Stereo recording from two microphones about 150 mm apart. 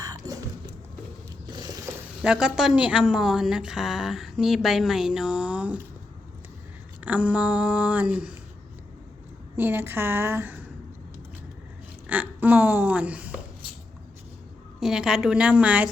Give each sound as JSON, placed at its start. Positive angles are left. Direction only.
{"t": 0.0, "sound": "music", "side_deg": -25}
{"t": 2.2, "sound": "a woman's voice", "side_deg": -5}
{"t": 7.0, "sound": "a sound", "side_deg": -10}
{"t": 9.6, "sound": "a sound", "side_deg": -15}
{"t": 12.0, "sound": "speech", "side_deg": -10}
{"t": 14.8, "sound": "a woman's voice", "side_deg": -5}